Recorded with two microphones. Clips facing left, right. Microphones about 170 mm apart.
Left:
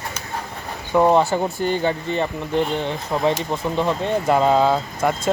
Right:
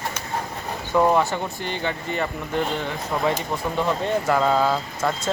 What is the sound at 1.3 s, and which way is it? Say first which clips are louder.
Speech: left 7 dB; 40° left (ahead or behind).